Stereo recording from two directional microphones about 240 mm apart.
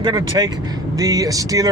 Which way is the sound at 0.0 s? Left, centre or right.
Centre.